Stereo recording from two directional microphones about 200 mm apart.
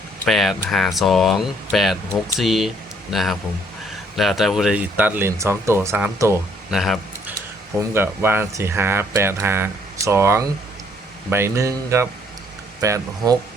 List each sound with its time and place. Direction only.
0.3 s speech: centre (ahead or behind)
6.7 s a sound: centre (ahead or behind)
7.8 s speech: 10° right (ahead or behind)